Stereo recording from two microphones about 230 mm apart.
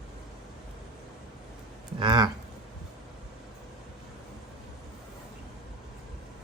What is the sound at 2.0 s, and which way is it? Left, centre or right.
Speech, centre.